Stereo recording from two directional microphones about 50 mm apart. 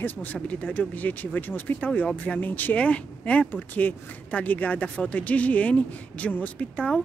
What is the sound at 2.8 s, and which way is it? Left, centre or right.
Speech, left.